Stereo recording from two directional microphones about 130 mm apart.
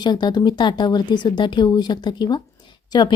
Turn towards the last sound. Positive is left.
turn(degrees=35)  # may be behind; listen again after turning